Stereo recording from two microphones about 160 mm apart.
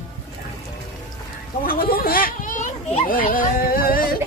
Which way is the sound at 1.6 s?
65° left (ahead or behind).